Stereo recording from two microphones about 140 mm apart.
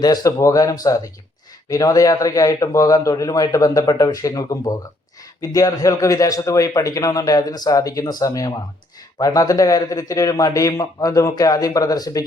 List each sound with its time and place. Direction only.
0.0 s a man's voice: 30° left (ahead or behind)